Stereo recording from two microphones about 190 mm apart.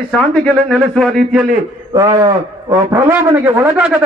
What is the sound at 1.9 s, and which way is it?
A man's voice, 15° right (ahead or behind).